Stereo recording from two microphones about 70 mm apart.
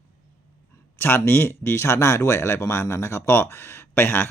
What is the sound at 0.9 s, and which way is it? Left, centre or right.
Speech, left.